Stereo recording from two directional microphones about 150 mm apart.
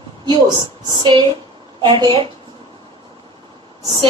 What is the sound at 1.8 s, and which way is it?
Speech, 30° right (ahead or behind).